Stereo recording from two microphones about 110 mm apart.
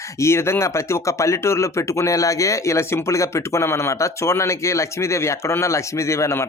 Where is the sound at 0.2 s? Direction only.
25° left (ahead or behind).